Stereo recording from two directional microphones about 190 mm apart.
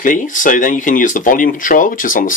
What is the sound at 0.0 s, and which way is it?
Speech, 45° left (ahead or behind).